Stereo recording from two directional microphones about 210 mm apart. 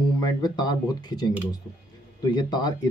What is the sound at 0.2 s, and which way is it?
Speech, 20° left (ahead or behind).